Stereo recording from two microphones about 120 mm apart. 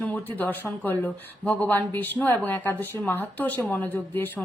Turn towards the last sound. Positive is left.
turn(degrees=15)  # may be behind; listen again after turning